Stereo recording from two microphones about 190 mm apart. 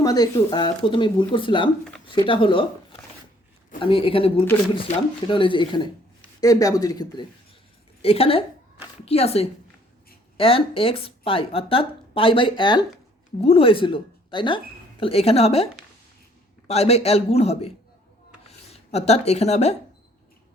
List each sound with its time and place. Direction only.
0.0 s speech: 20° left (ahead or behind)
8.0 s a man's voice: 30° left (ahead or behind)